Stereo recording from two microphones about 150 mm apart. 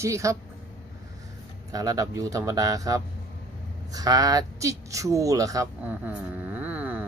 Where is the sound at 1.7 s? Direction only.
25° right (ahead or behind).